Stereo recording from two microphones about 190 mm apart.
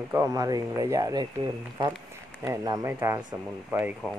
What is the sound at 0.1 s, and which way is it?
Speech, 15° right (ahead or behind).